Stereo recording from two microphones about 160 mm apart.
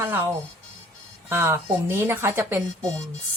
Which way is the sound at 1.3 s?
15° right (ahead or behind).